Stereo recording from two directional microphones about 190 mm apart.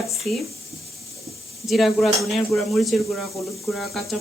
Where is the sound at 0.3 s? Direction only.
5° left (ahead or behind).